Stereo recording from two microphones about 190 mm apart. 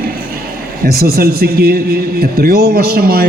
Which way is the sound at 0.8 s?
55° right (ahead or behind).